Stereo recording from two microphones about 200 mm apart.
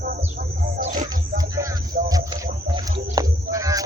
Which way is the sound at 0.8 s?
35° right (ahead or behind).